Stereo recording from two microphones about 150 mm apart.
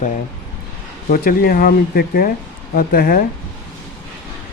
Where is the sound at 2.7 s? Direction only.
70° left (ahead or behind).